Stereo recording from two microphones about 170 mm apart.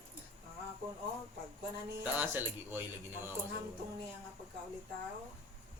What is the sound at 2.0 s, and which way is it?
Speech, 10° right (ahead or behind).